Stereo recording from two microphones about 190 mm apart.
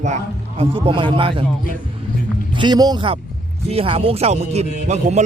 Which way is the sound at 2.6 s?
20° right (ahead or behind).